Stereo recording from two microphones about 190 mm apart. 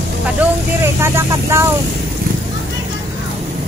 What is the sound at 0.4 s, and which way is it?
Vehicle, 10° right (ahead or behind).